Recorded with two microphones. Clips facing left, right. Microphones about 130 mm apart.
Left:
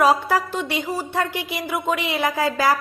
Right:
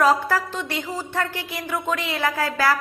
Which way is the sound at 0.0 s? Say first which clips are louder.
Left 1 dB; 15° left (ahead or behind).